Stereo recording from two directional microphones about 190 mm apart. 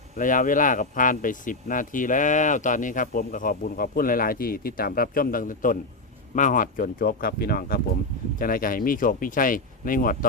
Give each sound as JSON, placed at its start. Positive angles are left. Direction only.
{"t": 0.2, "sound": "speech", "side_deg": 45}